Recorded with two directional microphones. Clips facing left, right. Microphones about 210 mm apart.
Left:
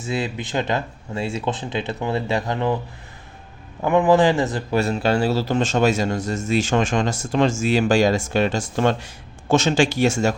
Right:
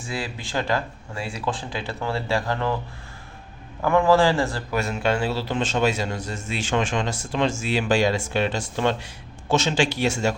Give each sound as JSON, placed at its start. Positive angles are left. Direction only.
{"t": 0.0, "sound": "speech", "side_deg": 20}
{"t": 3.8, "sound": "speech", "side_deg": 20}
{"t": 4.8, "sound": "speech", "side_deg": 35}